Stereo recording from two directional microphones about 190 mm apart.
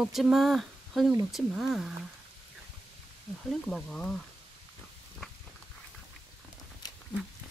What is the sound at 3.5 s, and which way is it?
Speech, centre (ahead or behind).